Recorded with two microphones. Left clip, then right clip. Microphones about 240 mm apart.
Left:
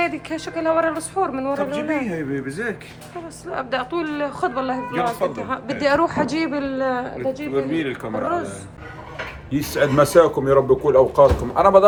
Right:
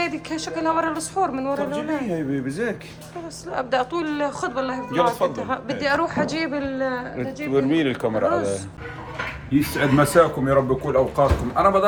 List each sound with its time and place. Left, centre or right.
0.0 s speech: centre
2.5 s a man's voice: right
3.5 s speech: centre
7.5 s speech: right
8.3 s speech: centre